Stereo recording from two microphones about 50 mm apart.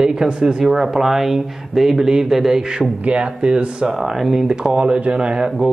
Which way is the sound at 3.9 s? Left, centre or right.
Centre.